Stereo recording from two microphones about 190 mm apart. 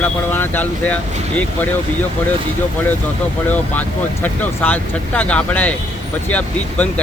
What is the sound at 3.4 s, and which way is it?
Speech, 10° left (ahead or behind).